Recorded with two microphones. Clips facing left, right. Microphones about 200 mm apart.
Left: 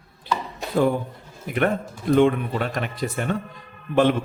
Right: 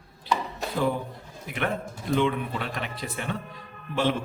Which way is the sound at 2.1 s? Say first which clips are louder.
Left 7 dB; 50° left (ahead or behind).